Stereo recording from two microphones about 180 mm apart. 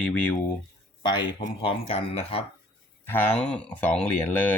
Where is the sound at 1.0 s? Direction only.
25° left (ahead or behind).